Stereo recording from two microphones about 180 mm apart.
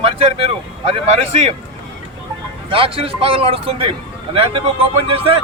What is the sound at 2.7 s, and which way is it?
Speech, 30° right (ahead or behind).